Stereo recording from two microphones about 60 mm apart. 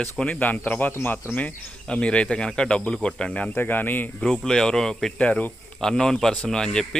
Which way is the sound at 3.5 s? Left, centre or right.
Left.